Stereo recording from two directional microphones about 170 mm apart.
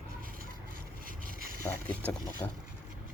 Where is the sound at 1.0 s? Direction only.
55° right (ahead or behind).